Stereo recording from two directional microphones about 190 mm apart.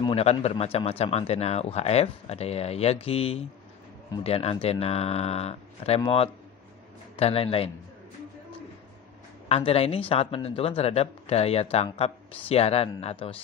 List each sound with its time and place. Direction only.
0.0 s speech: 30° left (ahead or behind)
9.5 s speech: 30° left (ahead or behind)